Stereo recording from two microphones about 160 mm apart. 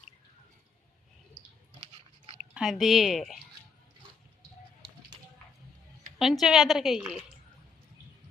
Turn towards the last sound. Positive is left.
turn(degrees=-5)  # may be behind; listen again after turning